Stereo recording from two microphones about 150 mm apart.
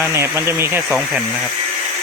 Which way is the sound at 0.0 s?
15° right (ahead or behind).